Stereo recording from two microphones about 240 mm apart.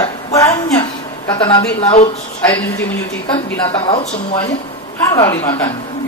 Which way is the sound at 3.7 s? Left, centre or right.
Left.